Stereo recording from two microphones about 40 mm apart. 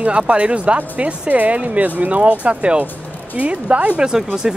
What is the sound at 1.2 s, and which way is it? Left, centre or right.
Speech, right.